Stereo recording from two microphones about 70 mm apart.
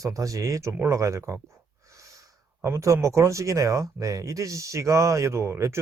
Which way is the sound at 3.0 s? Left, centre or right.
Right.